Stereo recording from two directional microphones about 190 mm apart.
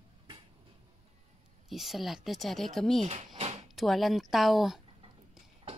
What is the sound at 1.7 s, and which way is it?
Speech, centre (ahead or behind).